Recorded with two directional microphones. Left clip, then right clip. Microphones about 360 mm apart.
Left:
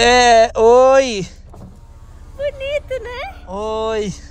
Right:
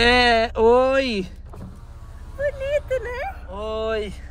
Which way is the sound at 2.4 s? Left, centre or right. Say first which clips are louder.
Left 2 dB; centre.